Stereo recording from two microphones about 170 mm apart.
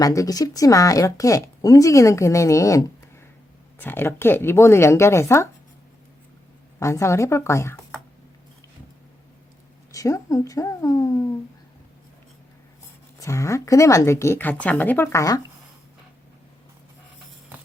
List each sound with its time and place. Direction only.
0.0 s a woman's voice: 20° left (ahead or behind)
6.7 s a woman's voice: 15° left (ahead or behind)
9.9 s speech: 20° left (ahead or behind)
13.1 s a woman's voice: 20° left (ahead or behind)